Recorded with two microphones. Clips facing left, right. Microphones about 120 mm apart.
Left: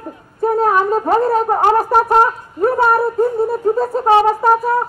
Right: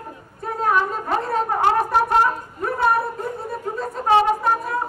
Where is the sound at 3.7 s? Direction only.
35° left (ahead or behind).